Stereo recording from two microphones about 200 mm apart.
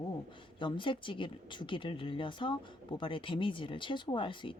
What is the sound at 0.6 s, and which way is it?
Speech, 25° left (ahead or behind).